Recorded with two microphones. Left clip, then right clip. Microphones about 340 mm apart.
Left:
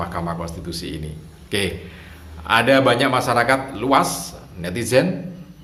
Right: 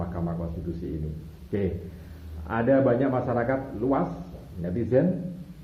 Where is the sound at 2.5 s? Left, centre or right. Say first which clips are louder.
Left 7 dB; left.